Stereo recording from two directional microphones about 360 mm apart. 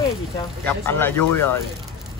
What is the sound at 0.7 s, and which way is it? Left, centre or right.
Speech, centre.